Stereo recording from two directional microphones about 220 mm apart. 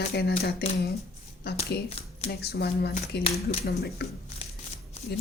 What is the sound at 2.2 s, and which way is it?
Speech, 45° left (ahead or behind).